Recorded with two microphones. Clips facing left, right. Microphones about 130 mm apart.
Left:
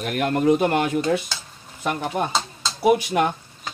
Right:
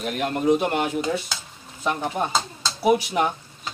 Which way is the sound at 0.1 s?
55° left (ahead or behind).